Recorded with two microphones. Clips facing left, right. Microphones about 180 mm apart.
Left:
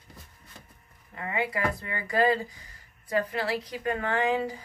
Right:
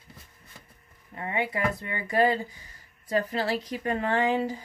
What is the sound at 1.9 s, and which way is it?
Speech, 25° right (ahead or behind).